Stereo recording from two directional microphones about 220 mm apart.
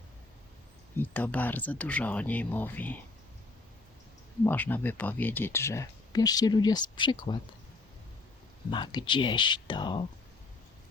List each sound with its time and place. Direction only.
0.9 s speech: 10° left (ahead or behind)
4.4 s speech: 10° left (ahead or behind)
8.7 s speech: 20° left (ahead or behind)